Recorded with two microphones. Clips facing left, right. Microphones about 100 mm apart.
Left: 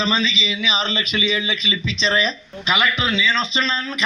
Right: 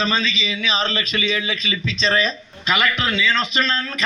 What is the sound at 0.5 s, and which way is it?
Speech, 10° left (ahead or behind).